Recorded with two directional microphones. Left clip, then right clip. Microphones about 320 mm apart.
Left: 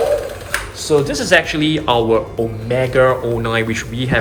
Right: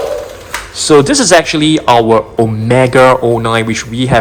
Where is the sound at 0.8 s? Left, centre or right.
Right.